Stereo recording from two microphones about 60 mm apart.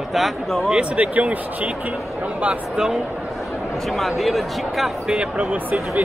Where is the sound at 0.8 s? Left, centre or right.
Right.